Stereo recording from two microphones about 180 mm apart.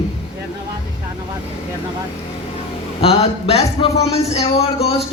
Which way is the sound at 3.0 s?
35° left (ahead or behind).